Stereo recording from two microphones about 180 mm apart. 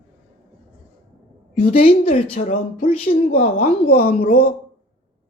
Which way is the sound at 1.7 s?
30° left (ahead or behind).